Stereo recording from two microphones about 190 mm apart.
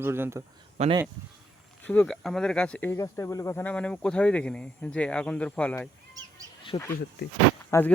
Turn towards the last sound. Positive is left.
turn(degrees=10)  # may be behind; listen again after turning